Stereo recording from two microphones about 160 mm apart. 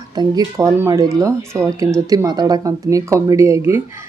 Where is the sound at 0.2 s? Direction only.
25° right (ahead or behind).